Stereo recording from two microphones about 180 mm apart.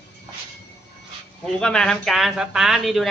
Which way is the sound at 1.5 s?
5° left (ahead or behind).